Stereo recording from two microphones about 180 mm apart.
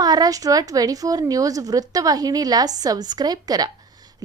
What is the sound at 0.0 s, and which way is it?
Speech, 20° right (ahead or behind).